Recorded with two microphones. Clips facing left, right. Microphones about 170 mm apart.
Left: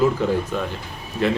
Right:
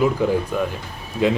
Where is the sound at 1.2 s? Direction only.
15° right (ahead or behind).